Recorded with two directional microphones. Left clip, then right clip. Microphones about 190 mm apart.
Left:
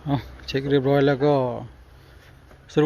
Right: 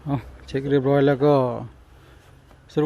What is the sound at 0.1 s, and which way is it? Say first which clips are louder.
Speech: left 2 dB; centre (ahead or behind).